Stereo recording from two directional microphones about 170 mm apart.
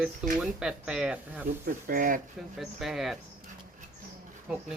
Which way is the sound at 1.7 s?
55° right (ahead or behind).